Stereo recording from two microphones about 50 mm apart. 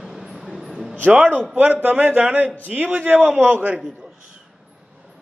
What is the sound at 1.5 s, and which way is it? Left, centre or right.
A man's voice, right.